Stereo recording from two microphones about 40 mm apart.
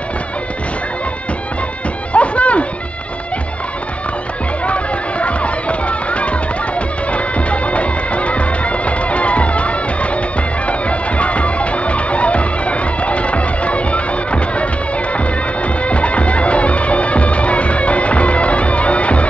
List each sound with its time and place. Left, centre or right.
2.1 s music: left
4.6 s music: left
7.1 s bagpipes: left
10.7 s music: left
15.8 s music: left